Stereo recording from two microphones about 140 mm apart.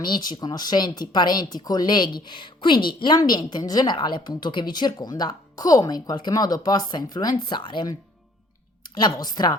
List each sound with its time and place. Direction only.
0.0 s speech: 30° left (ahead or behind)